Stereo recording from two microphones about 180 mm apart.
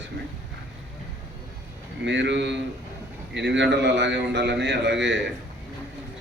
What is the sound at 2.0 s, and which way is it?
A man's voice, 75° right (ahead or behind).